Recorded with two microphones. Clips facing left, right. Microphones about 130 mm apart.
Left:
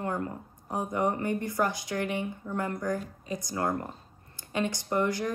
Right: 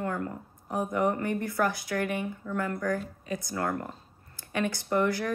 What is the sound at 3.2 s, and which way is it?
Speech, 60° right (ahead or behind).